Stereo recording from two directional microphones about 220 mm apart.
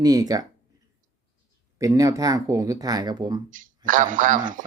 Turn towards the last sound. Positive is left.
turn(degrees=-35)  # may be behind; listen again after turning